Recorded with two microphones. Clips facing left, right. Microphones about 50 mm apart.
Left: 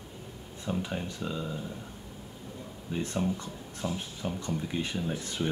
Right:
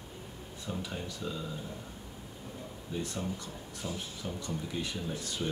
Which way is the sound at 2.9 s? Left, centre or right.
Left.